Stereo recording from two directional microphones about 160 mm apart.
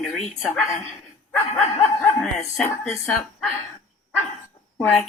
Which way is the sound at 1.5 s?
45° left (ahead or behind).